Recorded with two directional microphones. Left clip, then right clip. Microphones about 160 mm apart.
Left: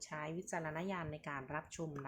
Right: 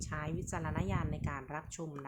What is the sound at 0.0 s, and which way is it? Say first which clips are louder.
Speech: right 3 dB; 20° right (ahead or behind).